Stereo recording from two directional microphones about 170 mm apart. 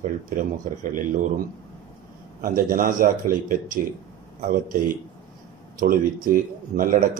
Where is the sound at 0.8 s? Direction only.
50° right (ahead or behind).